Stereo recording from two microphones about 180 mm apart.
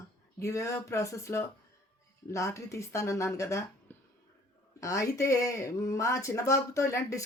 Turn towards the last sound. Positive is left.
turn(degrees=15)  # may be behind; listen again after turning